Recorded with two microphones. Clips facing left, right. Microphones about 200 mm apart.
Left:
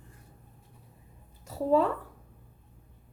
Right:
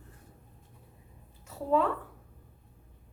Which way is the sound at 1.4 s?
40° left (ahead or behind).